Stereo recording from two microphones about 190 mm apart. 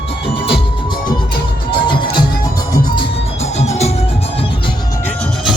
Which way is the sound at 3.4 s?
35° left (ahead or behind).